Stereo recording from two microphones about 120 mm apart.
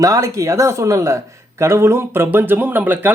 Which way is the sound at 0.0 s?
25° right (ahead or behind).